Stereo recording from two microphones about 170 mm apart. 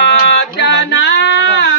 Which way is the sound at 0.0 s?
85° left.